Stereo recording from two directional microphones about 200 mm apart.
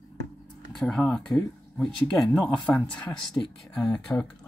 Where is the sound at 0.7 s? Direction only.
Centre (ahead or behind).